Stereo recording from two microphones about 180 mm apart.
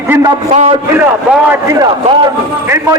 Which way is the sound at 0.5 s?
35° right (ahead or behind).